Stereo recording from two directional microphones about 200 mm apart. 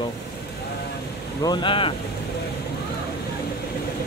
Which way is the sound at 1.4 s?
20° left (ahead or behind).